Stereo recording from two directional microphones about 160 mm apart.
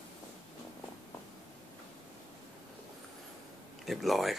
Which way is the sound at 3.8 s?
Centre (ahead or behind).